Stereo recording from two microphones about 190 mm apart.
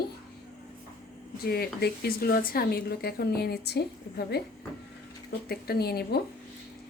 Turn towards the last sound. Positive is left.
turn(degrees=55)  # may be behind; listen again after turning